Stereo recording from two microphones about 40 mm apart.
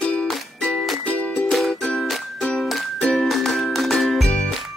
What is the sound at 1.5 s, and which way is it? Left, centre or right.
Music, centre.